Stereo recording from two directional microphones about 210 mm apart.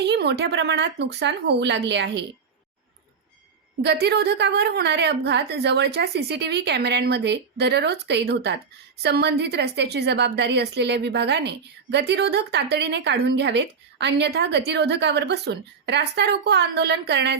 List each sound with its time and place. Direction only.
0.0 s speech: 55° right (ahead or behind)
3.8 s a woman's voice: 50° right (ahead or behind)